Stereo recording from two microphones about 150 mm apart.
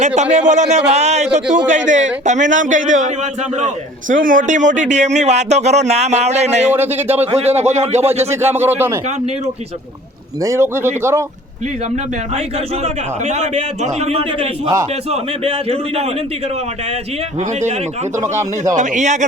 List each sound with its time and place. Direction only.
0.2 s a man's voice: 50° right (ahead or behind)
4.1 s a man's voice: 60° right (ahead or behind)
6.7 s speech: 15° right (ahead or behind)
7.3 s a man's voice: 45° right (ahead or behind)
8.3 s speech: 15° right (ahead or behind)
10.4 s speech: 20° right (ahead or behind)
12.8 s a man's voice: 50° right (ahead or behind)
18.2 s speech: 20° right (ahead or behind)
18.8 s a man's voice: 55° right (ahead or behind)